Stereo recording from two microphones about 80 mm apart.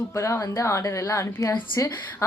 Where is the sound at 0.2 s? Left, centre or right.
Left.